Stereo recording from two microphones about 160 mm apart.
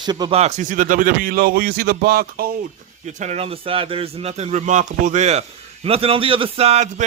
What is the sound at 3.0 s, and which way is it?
A man's voice, 45° right (ahead or behind).